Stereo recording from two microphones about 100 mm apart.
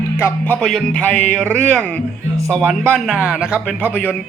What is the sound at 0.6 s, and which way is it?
A man's voice, 5° left (ahead or behind).